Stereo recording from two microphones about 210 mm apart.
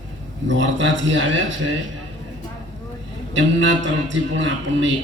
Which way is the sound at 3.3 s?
60° right (ahead or behind).